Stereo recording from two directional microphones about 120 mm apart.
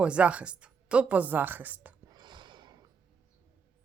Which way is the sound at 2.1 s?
35° right (ahead or behind).